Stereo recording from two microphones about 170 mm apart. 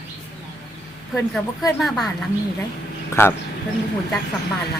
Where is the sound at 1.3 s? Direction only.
Centre (ahead or behind).